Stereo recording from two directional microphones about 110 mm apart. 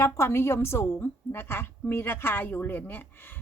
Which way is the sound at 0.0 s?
25° left (ahead or behind).